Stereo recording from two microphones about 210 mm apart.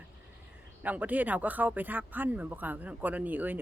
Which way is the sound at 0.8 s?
10° right (ahead or behind).